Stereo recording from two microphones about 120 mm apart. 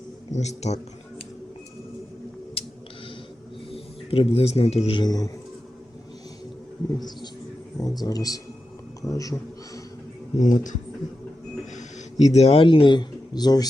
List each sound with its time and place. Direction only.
0.3 s a man's voice: 70° left (ahead or behind)
2.6 s a sound: 50° left (ahead or behind)
3.7 s speech: 50° left (ahead or behind)
4.9 s speech: 35° left (ahead or behind)
7.8 s a man's voice: 30° left (ahead or behind)
10.3 s speech: 90° left
11.7 s a sound: 75° left (ahead or behind); by 12.6 s 60° left (ahead or behind)
12.6 s speech: 45° left (ahead or behind)